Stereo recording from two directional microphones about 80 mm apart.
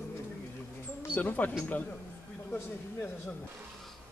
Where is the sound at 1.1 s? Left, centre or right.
Left.